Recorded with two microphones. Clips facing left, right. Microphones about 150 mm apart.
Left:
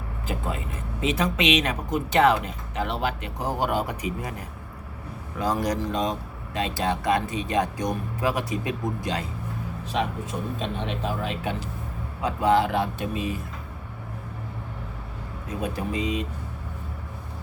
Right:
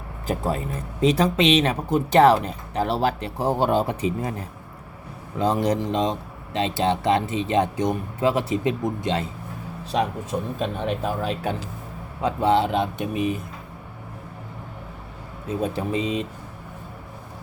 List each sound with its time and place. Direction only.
0.3 s speech: 40° right (ahead or behind)
10.6 s speech: 45° right (ahead or behind)
12.2 s speech: 25° right (ahead or behind)
15.4 s speech: 25° right (ahead or behind)